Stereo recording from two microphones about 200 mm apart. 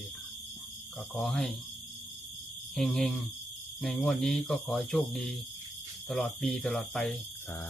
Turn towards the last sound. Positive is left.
turn(degrees=0)  # may be behind; listen again after turning